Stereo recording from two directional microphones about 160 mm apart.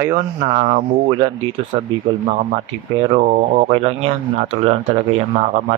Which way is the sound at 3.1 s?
45° right (ahead or behind).